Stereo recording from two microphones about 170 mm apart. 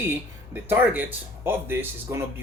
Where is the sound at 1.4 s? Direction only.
15° right (ahead or behind).